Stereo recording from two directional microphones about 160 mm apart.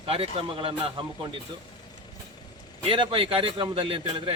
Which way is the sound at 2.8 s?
35° right (ahead or behind).